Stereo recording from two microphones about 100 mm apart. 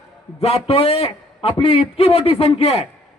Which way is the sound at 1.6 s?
85° left.